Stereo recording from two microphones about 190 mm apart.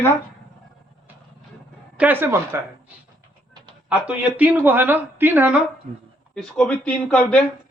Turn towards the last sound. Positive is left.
turn(degrees=5)  # may be behind; listen again after turning